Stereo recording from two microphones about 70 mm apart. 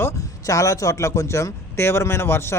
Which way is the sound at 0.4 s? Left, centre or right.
Left.